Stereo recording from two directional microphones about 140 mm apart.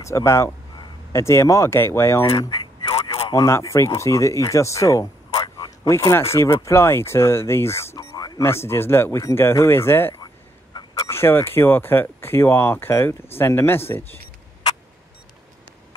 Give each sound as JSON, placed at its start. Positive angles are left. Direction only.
{"t": 0.0, "sound": "speech", "side_deg": 20}
{"t": 2.3, "sound": "a sound", "side_deg": 35}
{"t": 3.3, "sound": "speech", "side_deg": 20}
{"t": 8.0, "sound": "speech", "side_deg": 30}
{"t": 10.2, "sound": "a sound", "side_deg": 30}
{"t": 11.1, "sound": "speech", "side_deg": 15}